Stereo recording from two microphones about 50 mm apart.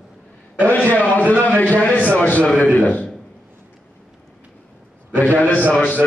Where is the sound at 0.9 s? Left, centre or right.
Left.